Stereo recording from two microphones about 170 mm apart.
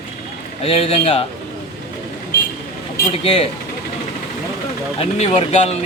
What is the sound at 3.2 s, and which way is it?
Speech, 35° left (ahead or behind).